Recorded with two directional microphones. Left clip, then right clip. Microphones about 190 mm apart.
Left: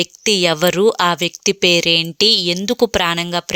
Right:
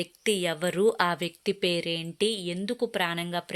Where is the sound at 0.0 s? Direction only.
25° left (ahead or behind).